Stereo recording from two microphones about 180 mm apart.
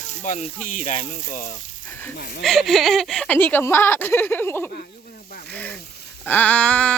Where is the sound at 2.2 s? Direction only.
55° left (ahead or behind).